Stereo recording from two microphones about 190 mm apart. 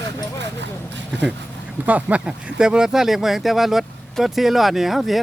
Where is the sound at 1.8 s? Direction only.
5° right (ahead or behind).